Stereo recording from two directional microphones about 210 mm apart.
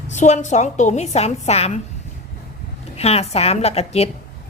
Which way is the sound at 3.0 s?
30° left (ahead or behind).